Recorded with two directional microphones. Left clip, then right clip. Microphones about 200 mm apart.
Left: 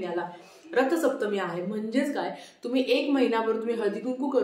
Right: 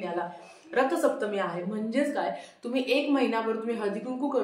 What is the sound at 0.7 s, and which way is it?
A woman's voice, 5° left (ahead or behind).